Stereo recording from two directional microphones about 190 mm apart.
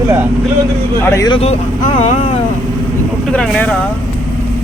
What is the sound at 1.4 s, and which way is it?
Speech, 35° left (ahead or behind).